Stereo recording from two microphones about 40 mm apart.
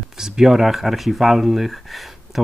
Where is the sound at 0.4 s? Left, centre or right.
Centre.